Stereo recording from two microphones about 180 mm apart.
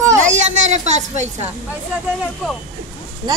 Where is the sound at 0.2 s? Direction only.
40° right (ahead or behind).